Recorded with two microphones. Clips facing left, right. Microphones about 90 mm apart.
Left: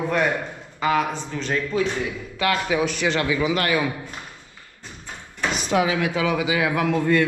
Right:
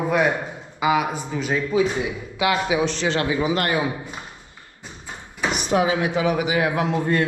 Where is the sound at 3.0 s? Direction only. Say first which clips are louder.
Even; 25° right (ahead or behind).